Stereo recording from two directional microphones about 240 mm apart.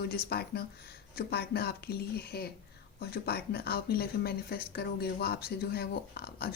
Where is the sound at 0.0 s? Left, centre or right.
Left.